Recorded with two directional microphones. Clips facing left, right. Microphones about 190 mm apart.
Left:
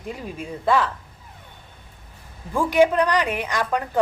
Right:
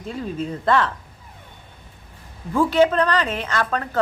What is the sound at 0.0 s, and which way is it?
Speech, 15° left (ahead or behind).